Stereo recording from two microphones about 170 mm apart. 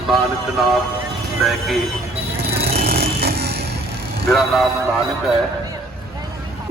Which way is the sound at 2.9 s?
70° right (ahead or behind).